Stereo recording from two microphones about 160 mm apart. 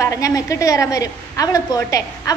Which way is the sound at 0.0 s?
20° left (ahead or behind).